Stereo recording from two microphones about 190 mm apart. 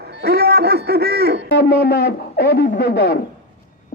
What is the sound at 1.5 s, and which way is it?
A man's voice, 60° left (ahead or behind).